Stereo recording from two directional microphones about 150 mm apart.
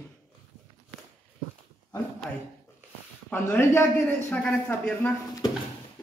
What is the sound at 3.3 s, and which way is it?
Speech, 15° left (ahead or behind).